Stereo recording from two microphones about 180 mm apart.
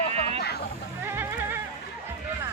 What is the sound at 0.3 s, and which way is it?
Sheep, 65° left (ahead or behind).